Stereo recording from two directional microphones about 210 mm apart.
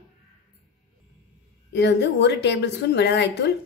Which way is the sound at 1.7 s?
55° left (ahead or behind).